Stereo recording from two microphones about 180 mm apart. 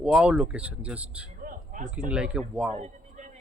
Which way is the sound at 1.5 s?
45° right (ahead or behind).